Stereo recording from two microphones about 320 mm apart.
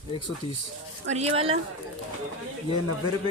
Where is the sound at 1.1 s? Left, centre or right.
Centre.